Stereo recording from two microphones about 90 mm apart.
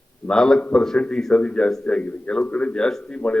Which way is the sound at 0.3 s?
10° left (ahead or behind).